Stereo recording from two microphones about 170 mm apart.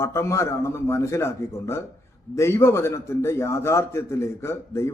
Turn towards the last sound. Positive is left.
turn(degrees=15)  # may be behind; listen again after turning